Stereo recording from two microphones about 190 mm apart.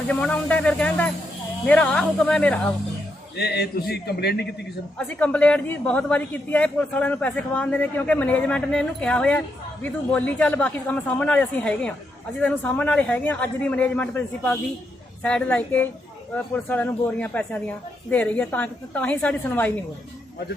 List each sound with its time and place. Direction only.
0.1 s a woman's voice: 5° left (ahead or behind)
3.3 s a man's voice: 60° left (ahead or behind)
4.9 s a woman's voice: 5° left (ahead or behind)